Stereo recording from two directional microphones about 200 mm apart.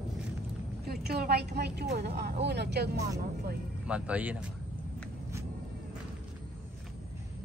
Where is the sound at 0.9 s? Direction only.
50° right (ahead or behind).